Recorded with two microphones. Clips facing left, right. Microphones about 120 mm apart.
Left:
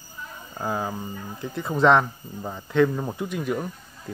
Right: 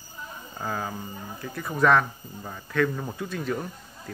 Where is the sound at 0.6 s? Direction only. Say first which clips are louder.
Left 4 dB; 20° left (ahead or behind).